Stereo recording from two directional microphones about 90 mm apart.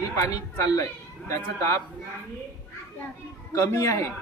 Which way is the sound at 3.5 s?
35° left (ahead or behind).